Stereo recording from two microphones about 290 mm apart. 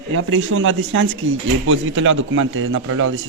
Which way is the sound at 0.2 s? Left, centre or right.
Right.